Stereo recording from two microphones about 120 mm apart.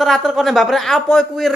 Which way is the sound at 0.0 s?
Centre (ahead or behind).